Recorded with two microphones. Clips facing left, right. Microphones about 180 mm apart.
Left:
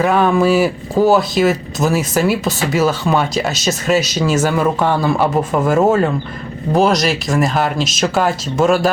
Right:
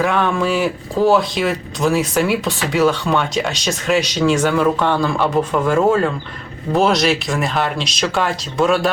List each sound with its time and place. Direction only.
0.0 s speech: 5° left (ahead or behind)